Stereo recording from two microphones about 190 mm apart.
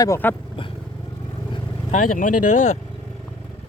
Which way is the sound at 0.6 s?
25° left (ahead or behind).